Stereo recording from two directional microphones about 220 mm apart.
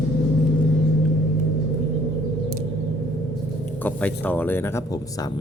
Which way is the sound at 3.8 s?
5° left (ahead or behind).